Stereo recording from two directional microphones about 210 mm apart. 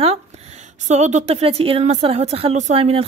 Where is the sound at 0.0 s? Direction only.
30° right (ahead or behind).